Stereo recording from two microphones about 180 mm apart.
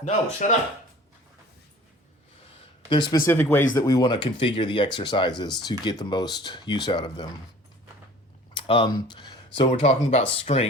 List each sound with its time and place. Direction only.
0.0 s speech: 45° left (ahead or behind)
2.9 s speech: 25° left (ahead or behind)
3.2 s speech: 10° left (ahead or behind)
8.5 s speech: 30° left (ahead or behind)